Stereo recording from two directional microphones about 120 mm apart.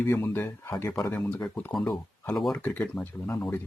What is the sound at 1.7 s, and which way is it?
Speech, centre (ahead or behind).